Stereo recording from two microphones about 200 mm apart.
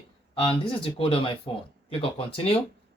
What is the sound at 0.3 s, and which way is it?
Speech, 25° left (ahead or behind).